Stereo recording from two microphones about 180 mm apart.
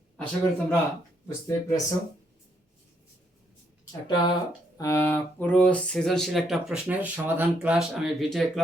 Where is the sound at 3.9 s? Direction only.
25° left (ahead or behind).